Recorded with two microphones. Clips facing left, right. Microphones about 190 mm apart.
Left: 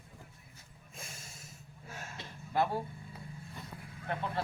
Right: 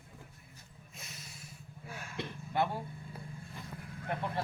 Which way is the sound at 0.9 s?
50° left (ahead or behind).